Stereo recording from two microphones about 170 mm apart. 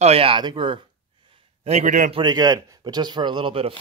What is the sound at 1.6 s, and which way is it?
Speech, 40° right (ahead or behind).